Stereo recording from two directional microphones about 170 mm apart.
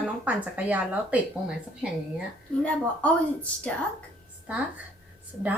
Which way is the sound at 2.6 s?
10° left (ahead or behind).